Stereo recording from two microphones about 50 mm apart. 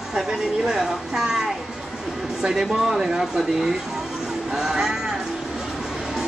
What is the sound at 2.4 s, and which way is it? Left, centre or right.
Speech, centre.